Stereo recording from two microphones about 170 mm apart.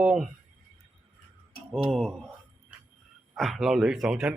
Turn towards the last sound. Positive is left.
turn(degrees=-5)  # may be behind; listen again after turning